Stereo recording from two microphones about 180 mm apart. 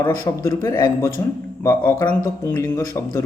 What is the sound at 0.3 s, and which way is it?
Speech, 15° left (ahead or behind).